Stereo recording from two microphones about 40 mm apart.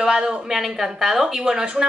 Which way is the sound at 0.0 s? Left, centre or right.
Centre.